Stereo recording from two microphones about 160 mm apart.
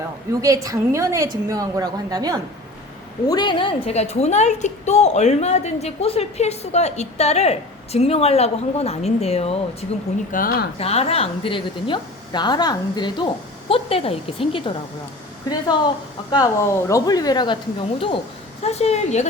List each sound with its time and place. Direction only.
0.4 s a woman's voice: 20° right (ahead or behind)
3.2 s a woman's voice: 25° left (ahead or behind)
10.3 s speech: 70° left (ahead or behind)
10.8 s a woman's voice: 40° left (ahead or behind)